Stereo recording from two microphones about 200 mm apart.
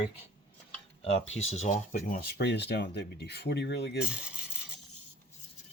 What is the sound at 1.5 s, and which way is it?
Speech, 40° left (ahead or behind).